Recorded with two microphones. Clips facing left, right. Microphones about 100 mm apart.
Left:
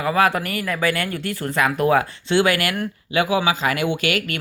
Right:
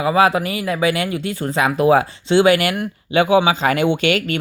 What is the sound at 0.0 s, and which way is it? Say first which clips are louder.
Speech: right 4 dB; 20° right (ahead or behind).